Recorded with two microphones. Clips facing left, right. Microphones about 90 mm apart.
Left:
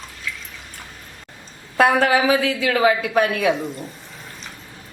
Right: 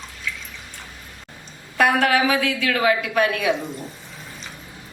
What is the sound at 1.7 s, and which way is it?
A woman's voice, 25° left (ahead or behind).